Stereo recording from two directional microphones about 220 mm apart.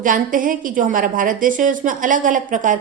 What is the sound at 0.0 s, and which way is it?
A woman's voice, 35° right (ahead or behind).